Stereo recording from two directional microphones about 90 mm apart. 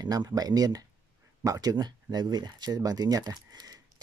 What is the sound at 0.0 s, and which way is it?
Speech, 45° right (ahead or behind).